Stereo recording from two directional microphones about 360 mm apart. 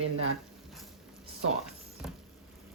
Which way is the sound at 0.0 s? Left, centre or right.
Right.